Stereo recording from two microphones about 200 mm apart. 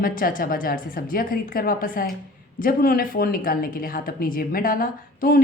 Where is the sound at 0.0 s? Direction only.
45° left (ahead or behind).